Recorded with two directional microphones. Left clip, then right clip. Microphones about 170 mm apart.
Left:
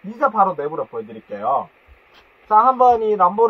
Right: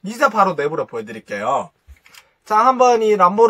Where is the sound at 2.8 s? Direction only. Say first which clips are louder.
Right 1 dB; 10° right (ahead or behind).